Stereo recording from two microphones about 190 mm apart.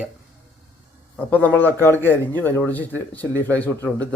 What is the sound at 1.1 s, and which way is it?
A man's voice, 10° left (ahead or behind).